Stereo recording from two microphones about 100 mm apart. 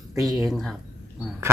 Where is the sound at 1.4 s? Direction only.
30° right (ahead or behind).